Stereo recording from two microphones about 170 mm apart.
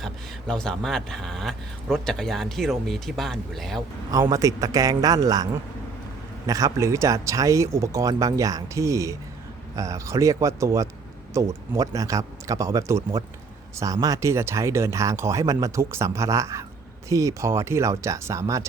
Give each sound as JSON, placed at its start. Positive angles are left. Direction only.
{"t": 0.0, "sound": "speech", "side_deg": 5}
{"t": 3.8, "sound": "speech", "side_deg": -20}
{"t": 6.5, "sound": "speech", "side_deg": -20}